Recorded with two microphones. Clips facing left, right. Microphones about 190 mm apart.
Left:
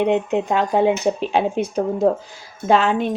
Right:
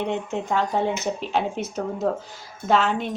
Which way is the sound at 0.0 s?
15° left (ahead or behind).